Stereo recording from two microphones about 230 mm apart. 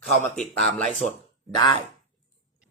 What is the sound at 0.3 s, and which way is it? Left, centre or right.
Speech, centre.